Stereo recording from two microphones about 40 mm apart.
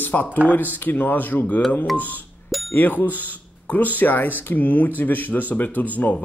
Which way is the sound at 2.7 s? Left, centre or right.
Left.